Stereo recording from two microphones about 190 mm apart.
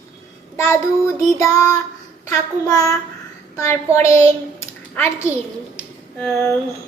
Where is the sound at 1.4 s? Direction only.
15° left (ahead or behind).